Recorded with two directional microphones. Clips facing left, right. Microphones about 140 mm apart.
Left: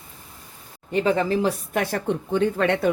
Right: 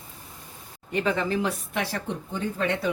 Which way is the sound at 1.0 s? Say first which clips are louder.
Left 5 dB; 35° left (ahead or behind).